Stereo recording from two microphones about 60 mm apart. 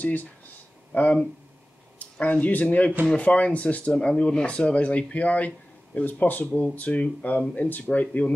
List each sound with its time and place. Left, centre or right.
0.0 s speech: left